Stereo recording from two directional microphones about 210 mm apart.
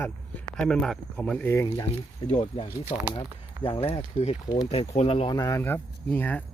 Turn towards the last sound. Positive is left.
turn(degrees=5)  # may be behind; listen again after turning